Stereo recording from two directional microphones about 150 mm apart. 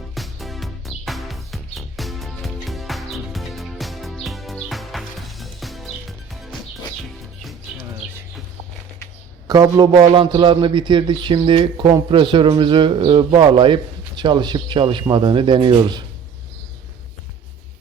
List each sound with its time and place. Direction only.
0.1 s music: centre (ahead or behind)
9.5 s a man's voice: 25° right (ahead or behind)